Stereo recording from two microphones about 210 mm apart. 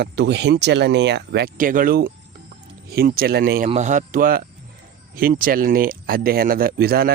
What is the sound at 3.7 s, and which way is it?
Speech, 35° right (ahead or behind).